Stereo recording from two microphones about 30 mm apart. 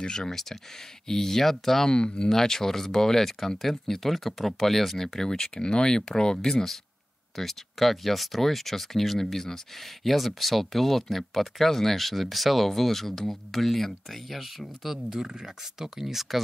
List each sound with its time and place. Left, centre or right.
0.0 s speech: left
0.3 s speech: centre
1.9 s speech: left
2.2 s speech: centre